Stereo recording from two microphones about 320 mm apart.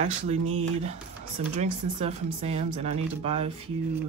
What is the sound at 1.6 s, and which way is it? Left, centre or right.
A woman's voice, centre.